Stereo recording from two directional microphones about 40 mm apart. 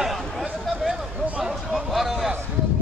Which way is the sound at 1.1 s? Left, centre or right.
Right.